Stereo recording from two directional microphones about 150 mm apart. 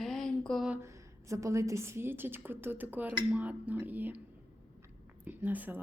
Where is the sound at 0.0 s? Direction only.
Centre (ahead or behind).